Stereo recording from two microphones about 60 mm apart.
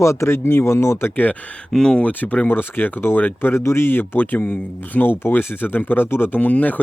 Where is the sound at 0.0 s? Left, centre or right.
Left.